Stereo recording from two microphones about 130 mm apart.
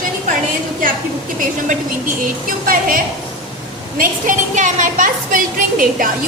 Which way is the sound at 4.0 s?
85° right.